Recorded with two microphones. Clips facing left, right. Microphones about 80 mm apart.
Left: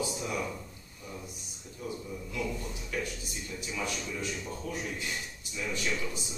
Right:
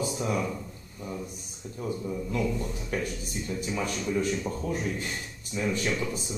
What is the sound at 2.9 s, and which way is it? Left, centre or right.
A man's voice, right.